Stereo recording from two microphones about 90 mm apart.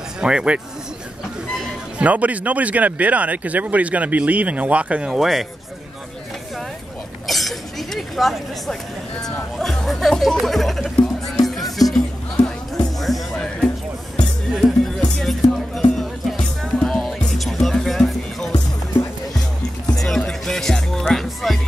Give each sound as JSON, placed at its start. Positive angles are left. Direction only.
{"t": 0.2, "sound": "speech", "side_deg": -10}
{"t": 2.0, "sound": "speech", "side_deg": -15}
{"t": 7.2, "sound": "speech", "side_deg": 0}
{"t": 11.4, "sound": "music", "side_deg": 0}
{"t": 14.8, "sound": "music", "side_deg": 5}
{"t": 20.0, "sound": "music", "side_deg": 5}